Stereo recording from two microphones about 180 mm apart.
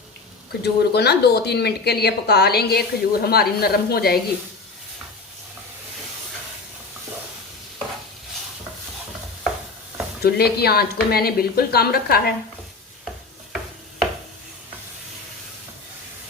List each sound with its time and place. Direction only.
0.6 s a woman's voice: 65° left (ahead or behind)
10.2 s a woman's voice: 60° left (ahead or behind)